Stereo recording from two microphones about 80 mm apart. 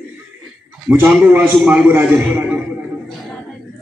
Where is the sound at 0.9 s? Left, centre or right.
Right.